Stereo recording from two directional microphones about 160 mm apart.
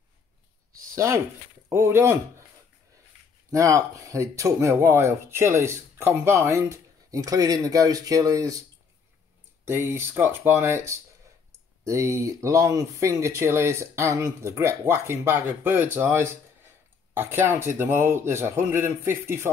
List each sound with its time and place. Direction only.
0.9 s speech: 20° right (ahead or behind)
3.5 s speech: 20° right (ahead or behind)
9.7 s speech: 15° right (ahead or behind)
11.8 s speech: 20° right (ahead or behind)